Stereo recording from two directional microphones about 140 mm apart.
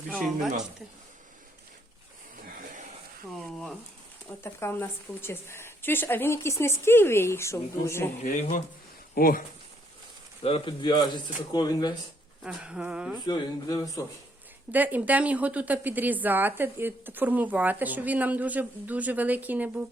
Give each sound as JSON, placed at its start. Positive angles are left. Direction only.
{"t": 3.3, "sound": "speech", "side_deg": 0}
{"t": 4.4, "sound": "a woman's voice", "side_deg": 15}
{"t": 8.2, "sound": "speech", "side_deg": 60}
{"t": 9.1, "sound": "speech", "side_deg": 90}
{"t": 10.7, "sound": "speech", "side_deg": 30}
{"t": 12.4, "sound": "a woman's voice", "side_deg": -5}
{"t": 13.2, "sound": "a man's voice", "side_deg": 30}
{"t": 14.7, "sound": "a woman's voice", "side_deg": -10}